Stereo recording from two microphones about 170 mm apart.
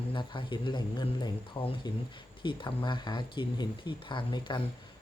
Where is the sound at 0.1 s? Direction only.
30° left (ahead or behind).